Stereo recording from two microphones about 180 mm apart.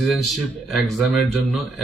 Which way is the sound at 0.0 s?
Centre (ahead or behind).